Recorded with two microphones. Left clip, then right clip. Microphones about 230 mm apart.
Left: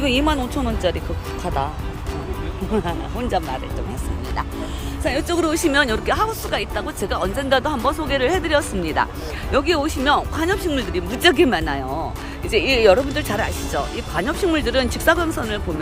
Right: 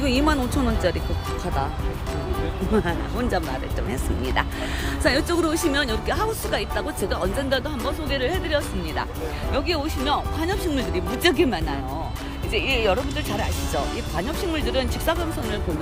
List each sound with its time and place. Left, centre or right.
0.0 s speech: centre
2.7 s speech: centre
5.0 s a woman's voice: centre